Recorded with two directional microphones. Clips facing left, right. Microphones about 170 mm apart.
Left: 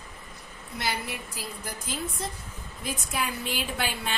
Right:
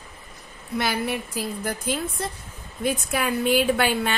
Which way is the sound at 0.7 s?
65° right (ahead or behind).